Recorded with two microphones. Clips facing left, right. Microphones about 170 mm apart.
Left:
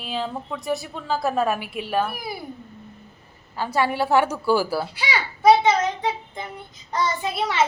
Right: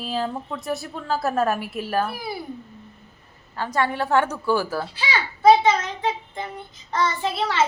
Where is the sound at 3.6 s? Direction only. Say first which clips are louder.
Left 1 dB; 10° left (ahead or behind).